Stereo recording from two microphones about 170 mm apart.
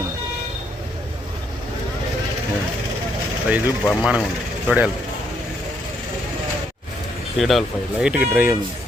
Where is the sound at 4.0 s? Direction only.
5° right (ahead or behind).